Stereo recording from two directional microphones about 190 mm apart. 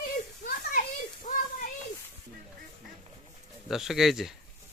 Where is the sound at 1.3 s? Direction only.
35° left (ahead or behind).